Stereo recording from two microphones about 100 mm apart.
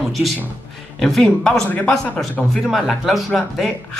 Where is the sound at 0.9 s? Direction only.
5° left (ahead or behind).